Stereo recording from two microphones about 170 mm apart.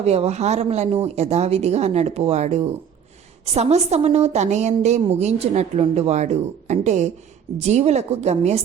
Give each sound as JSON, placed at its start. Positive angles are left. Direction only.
{"t": 0.0, "sound": "a woman's voice", "side_deg": -40}